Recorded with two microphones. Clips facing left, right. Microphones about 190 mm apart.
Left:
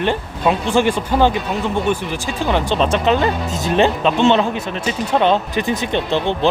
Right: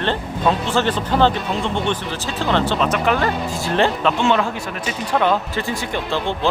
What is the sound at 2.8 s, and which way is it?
Speech, 25° left (ahead or behind).